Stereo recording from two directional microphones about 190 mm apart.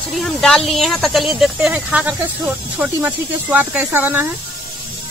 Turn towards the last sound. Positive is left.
turn(degrees=-10)  # may be behind; listen again after turning